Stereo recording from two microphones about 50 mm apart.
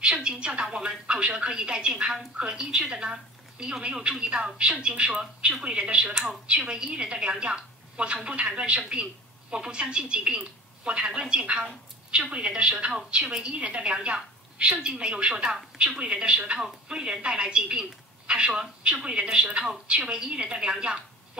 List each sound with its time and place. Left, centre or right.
0.0 s a woman's voice: centre